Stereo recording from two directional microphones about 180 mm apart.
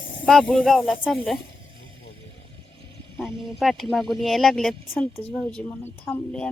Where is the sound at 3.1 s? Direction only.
Centre (ahead or behind).